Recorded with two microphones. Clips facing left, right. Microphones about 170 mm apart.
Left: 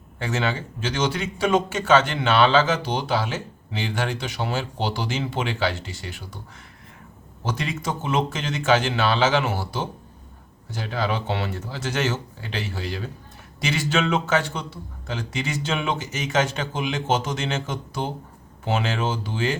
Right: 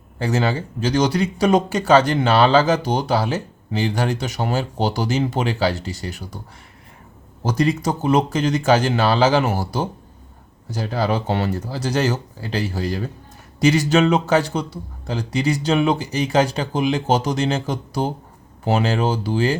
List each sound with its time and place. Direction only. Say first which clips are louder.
0.2 s speech: right 5 dB; 35° right (ahead or behind)
7.4 s speech: right 8 dB; 40° right (ahead or behind)